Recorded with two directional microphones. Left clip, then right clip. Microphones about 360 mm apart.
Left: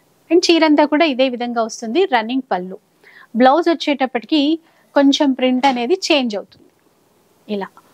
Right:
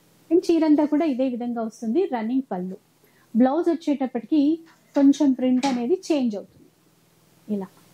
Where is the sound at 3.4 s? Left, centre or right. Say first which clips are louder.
Left 9 dB; centre.